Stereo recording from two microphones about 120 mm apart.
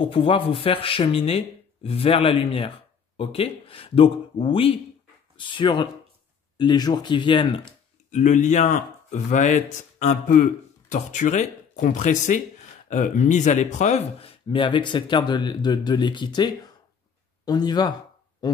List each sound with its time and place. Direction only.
0.0 s speech: 45° left (ahead or behind)
8.1 s speech: 90° left
14.2 s speech: 45° left (ahead or behind)